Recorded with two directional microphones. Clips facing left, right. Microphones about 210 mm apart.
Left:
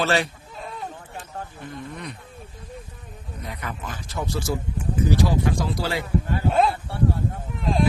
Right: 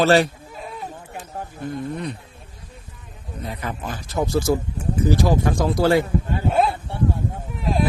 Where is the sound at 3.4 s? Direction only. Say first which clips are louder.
Right 5 dB; 30° right (ahead or behind); by 6.1 s 50° right (ahead or behind).